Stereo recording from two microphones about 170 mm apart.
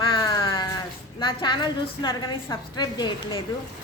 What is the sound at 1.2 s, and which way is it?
A woman's voice, 25° left (ahead or behind).